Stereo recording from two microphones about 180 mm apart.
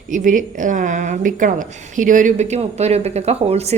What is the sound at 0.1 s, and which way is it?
A woman's voice, 45° right (ahead or behind).